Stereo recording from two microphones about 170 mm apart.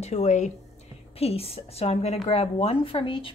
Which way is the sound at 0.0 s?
40° left (ahead or behind).